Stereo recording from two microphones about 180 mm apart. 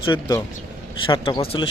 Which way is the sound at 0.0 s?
25° left (ahead or behind).